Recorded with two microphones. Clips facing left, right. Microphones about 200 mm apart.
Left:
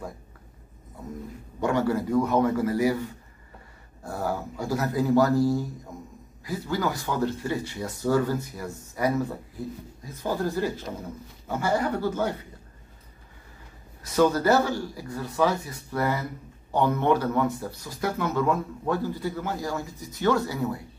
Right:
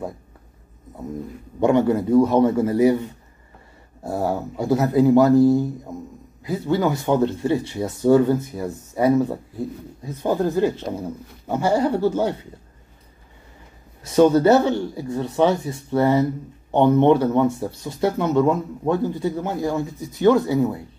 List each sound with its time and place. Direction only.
1.6 s speech: 20° right (ahead or behind)
10.3 s speech: 20° right (ahead or behind)
14.0 s speech: 25° right (ahead or behind)